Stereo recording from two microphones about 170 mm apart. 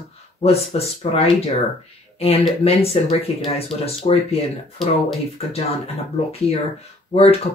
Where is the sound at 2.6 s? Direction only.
35° left (ahead or behind).